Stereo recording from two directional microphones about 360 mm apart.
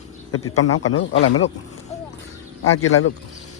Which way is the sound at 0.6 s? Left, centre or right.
Left.